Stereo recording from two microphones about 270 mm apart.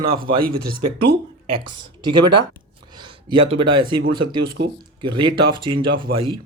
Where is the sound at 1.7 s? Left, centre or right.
Centre.